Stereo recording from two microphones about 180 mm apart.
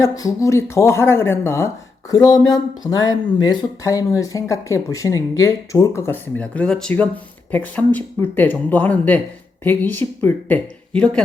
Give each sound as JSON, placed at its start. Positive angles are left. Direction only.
{"t": 0.0, "sound": "speech", "side_deg": 20}